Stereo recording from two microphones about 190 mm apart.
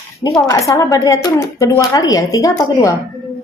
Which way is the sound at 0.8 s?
15° left (ahead or behind).